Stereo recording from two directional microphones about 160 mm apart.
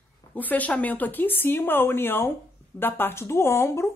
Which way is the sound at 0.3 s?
10° left (ahead or behind).